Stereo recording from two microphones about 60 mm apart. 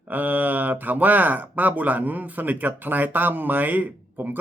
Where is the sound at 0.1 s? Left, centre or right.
Right.